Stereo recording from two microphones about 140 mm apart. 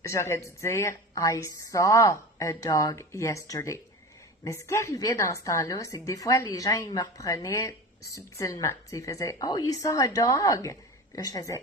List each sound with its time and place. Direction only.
0.0 s speech: 20° left (ahead or behind)